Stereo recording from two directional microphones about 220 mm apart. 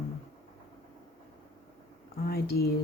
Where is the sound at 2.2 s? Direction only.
45° left (ahead or behind).